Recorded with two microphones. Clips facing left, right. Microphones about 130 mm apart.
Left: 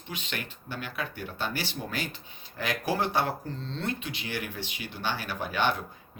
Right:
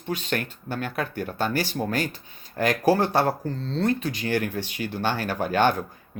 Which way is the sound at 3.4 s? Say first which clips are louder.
Right 9 dB; 40° right (ahead or behind).